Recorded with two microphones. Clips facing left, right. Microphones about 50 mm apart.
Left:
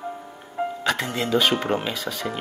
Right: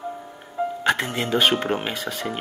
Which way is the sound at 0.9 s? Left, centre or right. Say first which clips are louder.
Right 1 dB; centre.